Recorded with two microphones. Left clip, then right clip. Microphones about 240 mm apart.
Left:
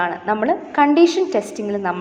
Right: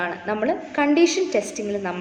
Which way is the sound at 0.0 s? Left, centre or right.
Centre.